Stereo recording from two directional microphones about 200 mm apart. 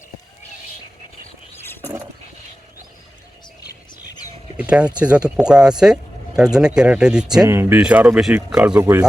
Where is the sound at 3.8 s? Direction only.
20° left (ahead or behind).